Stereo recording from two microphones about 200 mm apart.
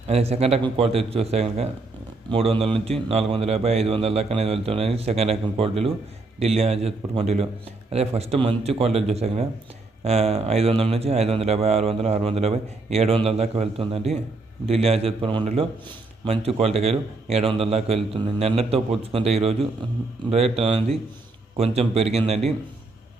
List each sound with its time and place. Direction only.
0.1 s a man's voice: 30° right (ahead or behind)